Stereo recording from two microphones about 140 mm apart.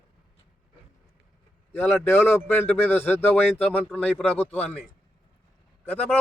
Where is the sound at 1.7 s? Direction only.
15° left (ahead or behind).